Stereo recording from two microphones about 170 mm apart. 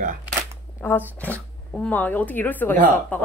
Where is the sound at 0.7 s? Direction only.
10° left (ahead or behind).